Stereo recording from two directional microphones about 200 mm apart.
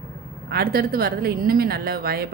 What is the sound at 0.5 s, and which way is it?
Speech, 50° right (ahead or behind).